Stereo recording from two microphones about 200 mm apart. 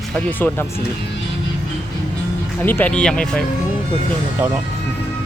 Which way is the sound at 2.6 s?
10° left (ahead or behind).